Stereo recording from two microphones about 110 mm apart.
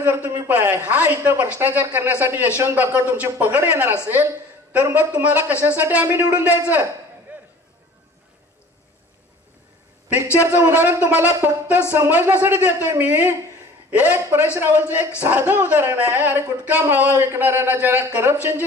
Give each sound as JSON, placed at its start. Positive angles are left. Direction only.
{"t": 0.0, "sound": "speech", "side_deg": -20}
{"t": 7.3, "sound": "a sound", "side_deg": -15}
{"t": 10.3, "sound": "speech", "side_deg": -15}